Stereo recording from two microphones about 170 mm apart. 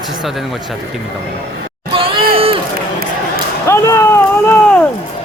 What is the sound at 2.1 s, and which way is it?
Run, 60° right (ahead or behind).